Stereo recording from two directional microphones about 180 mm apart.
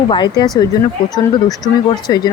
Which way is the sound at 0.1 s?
25° left (ahead or behind).